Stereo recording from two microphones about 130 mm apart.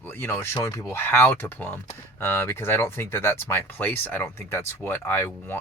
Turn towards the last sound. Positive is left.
turn(degrees=15)  # may be behind; listen again after turning